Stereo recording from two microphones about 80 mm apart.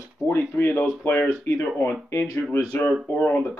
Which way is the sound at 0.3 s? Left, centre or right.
Left.